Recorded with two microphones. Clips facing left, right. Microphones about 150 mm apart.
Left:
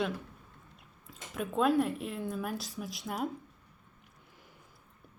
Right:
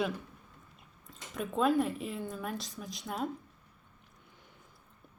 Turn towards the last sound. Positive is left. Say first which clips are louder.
# left 1 dB
turn(degrees=0)  # may be behind; listen again after turning